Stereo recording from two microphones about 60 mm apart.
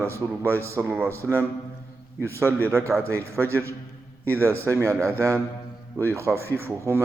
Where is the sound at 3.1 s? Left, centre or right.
Right.